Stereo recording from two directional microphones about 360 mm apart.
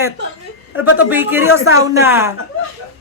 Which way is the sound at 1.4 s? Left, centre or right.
Left.